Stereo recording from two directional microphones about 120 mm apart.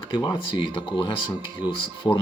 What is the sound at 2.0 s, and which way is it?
Speech, 25° left (ahead or behind).